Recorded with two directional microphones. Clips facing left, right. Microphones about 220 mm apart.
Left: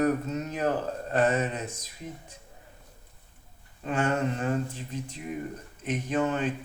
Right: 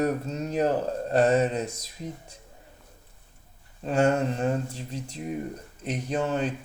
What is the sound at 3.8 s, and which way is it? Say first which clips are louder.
Speech: right 4 dB; 35° right (ahead or behind).